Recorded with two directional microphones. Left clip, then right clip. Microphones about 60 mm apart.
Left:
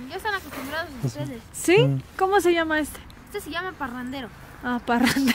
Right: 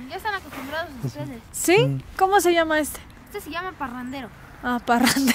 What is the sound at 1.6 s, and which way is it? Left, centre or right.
A woman's voice, right.